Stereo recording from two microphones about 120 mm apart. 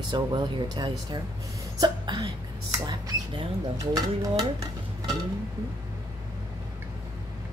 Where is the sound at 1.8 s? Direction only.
40° right (ahead or behind).